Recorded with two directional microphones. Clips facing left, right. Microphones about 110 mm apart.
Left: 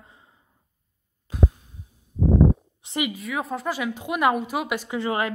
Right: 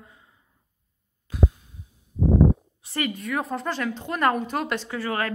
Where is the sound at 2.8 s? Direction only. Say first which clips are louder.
Left 1 dB; 15° left (ahead or behind).